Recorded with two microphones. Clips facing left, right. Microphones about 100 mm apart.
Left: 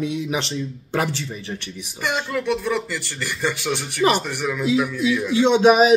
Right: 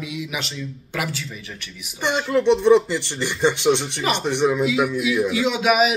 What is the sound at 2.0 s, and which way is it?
Speech, 25° right (ahead or behind).